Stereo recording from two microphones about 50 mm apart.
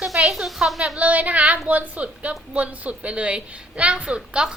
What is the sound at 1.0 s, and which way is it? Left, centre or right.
A woman's voice, right.